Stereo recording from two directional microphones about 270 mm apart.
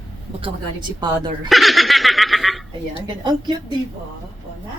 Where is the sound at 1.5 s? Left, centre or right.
Centre.